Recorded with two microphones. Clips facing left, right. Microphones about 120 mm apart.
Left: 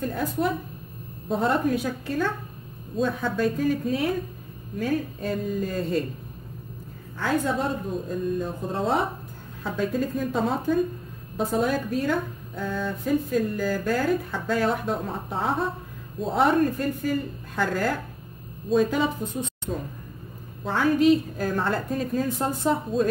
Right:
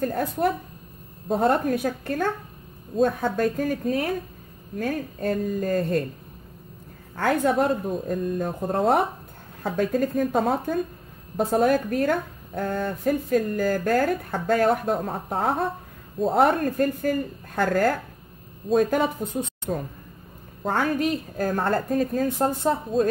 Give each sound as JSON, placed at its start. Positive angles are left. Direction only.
{"t": 0.0, "sound": "speech", "side_deg": -50}
{"t": 7.2, "sound": "speech", "side_deg": -60}